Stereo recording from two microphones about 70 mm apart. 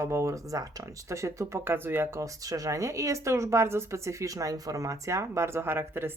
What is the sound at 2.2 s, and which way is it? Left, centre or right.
Speech, right.